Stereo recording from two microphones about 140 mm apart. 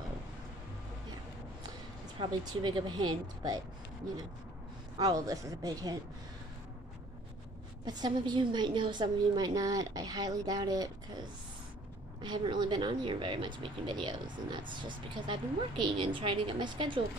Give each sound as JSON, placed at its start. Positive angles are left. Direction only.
{"t": 2.1, "sound": "speech", "side_deg": -35}
{"t": 4.9, "sound": "a woman's voice", "side_deg": -25}
{"t": 7.8, "sound": "a woman's voice", "side_deg": -30}
{"t": 12.2, "sound": "speech", "side_deg": -35}